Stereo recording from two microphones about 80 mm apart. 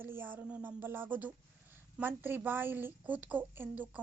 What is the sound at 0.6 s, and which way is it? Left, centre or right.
A woman's voice, right.